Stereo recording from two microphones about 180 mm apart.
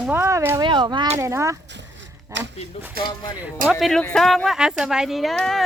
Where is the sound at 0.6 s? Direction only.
25° right (ahead or behind).